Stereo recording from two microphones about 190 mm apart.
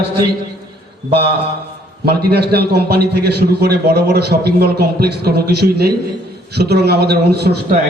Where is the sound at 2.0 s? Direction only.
55° right (ahead or behind).